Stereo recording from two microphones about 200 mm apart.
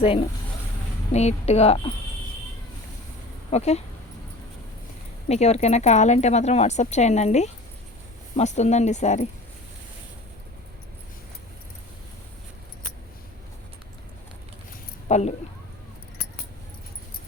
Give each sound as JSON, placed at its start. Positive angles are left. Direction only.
{"t": 0.0, "sound": "speech", "side_deg": 30}
{"t": 3.5, "sound": "speech", "side_deg": 35}
{"t": 5.3, "sound": "speech", "side_deg": 35}
{"t": 15.0, "sound": "speech", "side_deg": 35}